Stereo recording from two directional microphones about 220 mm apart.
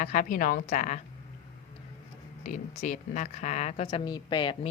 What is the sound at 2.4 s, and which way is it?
A woman's voice, 35° left (ahead or behind).